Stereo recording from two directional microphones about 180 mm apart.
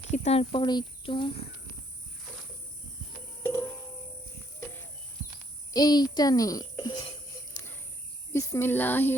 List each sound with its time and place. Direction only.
0.1 s speech: 35° left (ahead or behind)
3.4 s cricket: 15° left (ahead or behind)
5.7 s a child's voice: 20° left (ahead or behind)
7.6 s cricket: 20° left (ahead or behind)
8.3 s speech: 15° left (ahead or behind)